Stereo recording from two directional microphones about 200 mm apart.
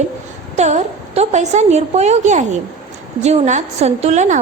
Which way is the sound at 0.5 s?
35° right (ahead or behind).